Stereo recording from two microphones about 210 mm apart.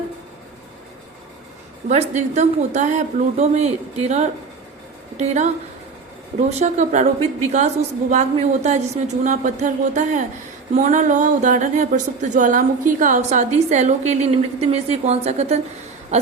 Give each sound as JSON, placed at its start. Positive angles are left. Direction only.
{"t": 1.9, "sound": "a woman's voice", "side_deg": -35}
{"t": 6.5, "sound": "a woman's voice", "side_deg": -30}